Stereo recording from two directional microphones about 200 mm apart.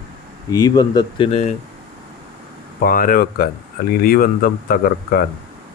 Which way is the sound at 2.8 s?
45° left (ahead or behind).